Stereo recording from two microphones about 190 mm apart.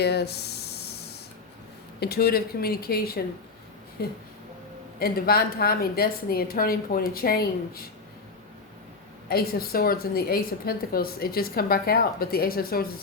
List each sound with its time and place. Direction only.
0.0 s a sound: 60° left (ahead or behind)
2.0 s a woman's voice: 55° left (ahead or behind)
9.3 s a woman's voice: 55° left (ahead or behind)